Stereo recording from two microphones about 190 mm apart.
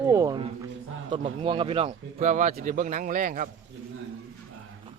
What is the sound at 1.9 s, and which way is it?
A man's voice, 40° right (ahead or behind).